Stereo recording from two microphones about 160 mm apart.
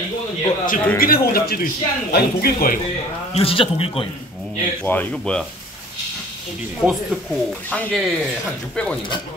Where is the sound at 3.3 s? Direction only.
35° left (ahead or behind).